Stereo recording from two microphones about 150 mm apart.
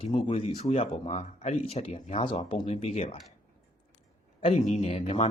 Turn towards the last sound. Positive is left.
turn(degrees=40)  # may be behind; listen again after turning